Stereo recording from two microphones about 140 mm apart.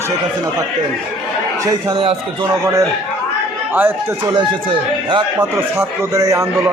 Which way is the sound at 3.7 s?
10° right (ahead or behind).